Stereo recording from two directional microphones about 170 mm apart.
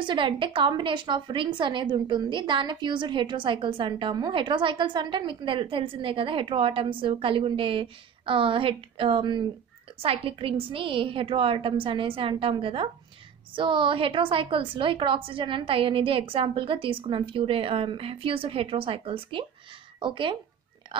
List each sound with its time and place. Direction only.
0.0 s a woman's voice: 30° right (ahead or behind)